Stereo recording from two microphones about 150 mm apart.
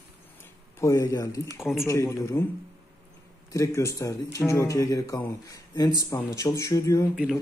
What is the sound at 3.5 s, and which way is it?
Speech, 20° left (ahead or behind).